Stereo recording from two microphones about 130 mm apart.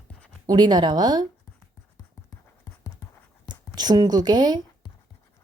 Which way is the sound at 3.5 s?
30° right (ahead or behind).